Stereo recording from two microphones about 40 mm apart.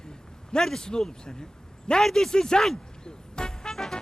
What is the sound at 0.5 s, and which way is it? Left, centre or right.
Speech, centre.